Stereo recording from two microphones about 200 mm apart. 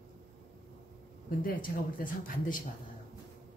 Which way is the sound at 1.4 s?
45° left (ahead or behind).